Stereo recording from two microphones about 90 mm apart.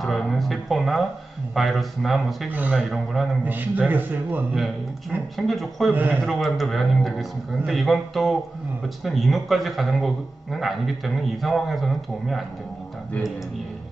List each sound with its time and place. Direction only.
0.0 s a man's voice: centre (ahead or behind)
3.4 s a man's voice: 20° right (ahead or behind)
5.3 s a man's voice: centre (ahead or behind)
5.9 s a man's voice: 20° right (ahead or behind)
6.2 s a man's voice: centre (ahead or behind)